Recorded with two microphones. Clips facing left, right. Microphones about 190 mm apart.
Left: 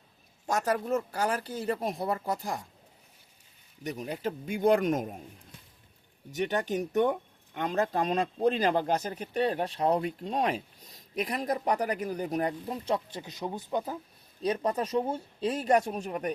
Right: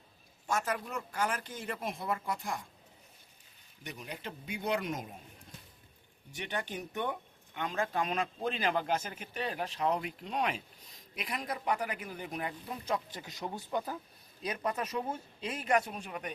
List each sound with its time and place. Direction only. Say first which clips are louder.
0.4 s speech: left 6 dB; 40° left (ahead or behind)
3.8 s speech: left 10 dB; 40° left (ahead or behind)
6.3 s speech: left 9 dB; 40° left (ahead or behind)
12.7 s speech: left 5 dB; 25° left (ahead or behind)
14.4 s speech: left 6 dB; 30° left (ahead or behind)